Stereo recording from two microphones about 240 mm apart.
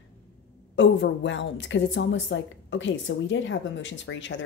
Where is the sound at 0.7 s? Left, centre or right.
Left.